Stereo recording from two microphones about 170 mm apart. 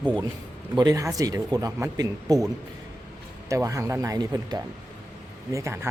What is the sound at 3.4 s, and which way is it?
Speech, 20° right (ahead or behind).